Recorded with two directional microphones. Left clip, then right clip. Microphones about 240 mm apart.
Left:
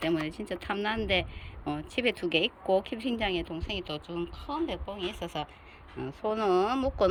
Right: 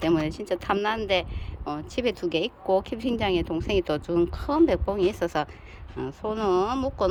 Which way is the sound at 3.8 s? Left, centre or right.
Right.